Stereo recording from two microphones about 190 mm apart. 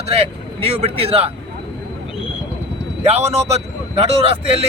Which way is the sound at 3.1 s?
30° right (ahead or behind).